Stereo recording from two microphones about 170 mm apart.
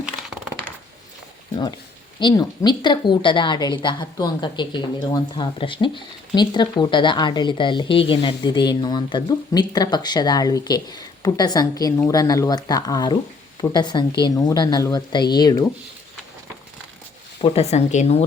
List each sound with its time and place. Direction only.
0.0 s a sound: 5° right (ahead or behind)
2.1 s a woman's voice: 25° left (ahead or behind)
17.4 s speech: 35° left (ahead or behind)